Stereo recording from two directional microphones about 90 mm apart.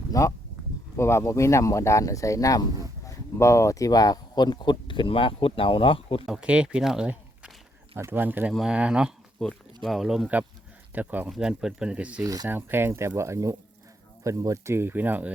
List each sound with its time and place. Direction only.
0.1 s speech: 35° left (ahead or behind); by 6.2 s 80° left
6.2 s speech: 10° right (ahead or behind)
7.9 s speech: 25° right (ahead or behind)
9.4 s speech: 5° left (ahead or behind)
10.9 s speech: 20° right (ahead or behind)
11.3 s speech: 5° right (ahead or behind)
12.2 s speech: 45° right (ahead or behind)
12.5 s speech: 25° right (ahead or behind)